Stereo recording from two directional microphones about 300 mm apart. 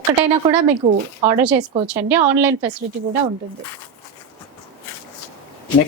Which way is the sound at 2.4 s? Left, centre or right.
Centre.